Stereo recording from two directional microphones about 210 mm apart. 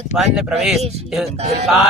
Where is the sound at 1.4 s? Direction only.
30° right (ahead or behind).